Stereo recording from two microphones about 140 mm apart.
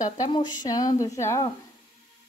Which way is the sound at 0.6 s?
25° left (ahead or behind).